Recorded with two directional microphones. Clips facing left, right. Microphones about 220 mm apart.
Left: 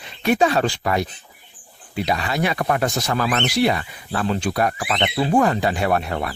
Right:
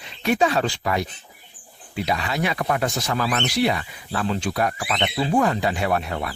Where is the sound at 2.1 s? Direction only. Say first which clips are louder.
Left 2 dB; 40° left (ahead or behind); by 3.5 s 60° left (ahead or behind).